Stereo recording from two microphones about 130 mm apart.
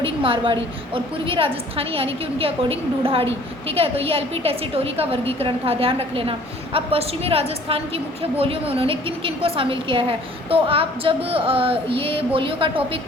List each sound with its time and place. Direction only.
0.0 s a woman's voice: 45° right (ahead or behind)